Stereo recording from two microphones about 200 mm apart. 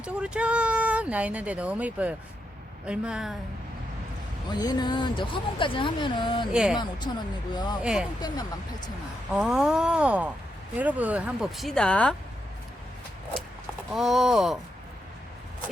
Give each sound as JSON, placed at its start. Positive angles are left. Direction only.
{"t": 0.0, "sound": "speech", "side_deg": -5}
{"t": 4.6, "sound": "speech", "side_deg": 20}
{"t": 6.5, "sound": "speech", "side_deg": -5}
{"t": 6.7, "sound": "speech", "side_deg": 20}
{"t": 7.8, "sound": "speech", "side_deg": -5}
{"t": 8.2, "sound": "speech", "side_deg": 20}
{"t": 9.3, "sound": "speech", "side_deg": -5}
{"t": 13.9, "sound": "speech", "side_deg": 0}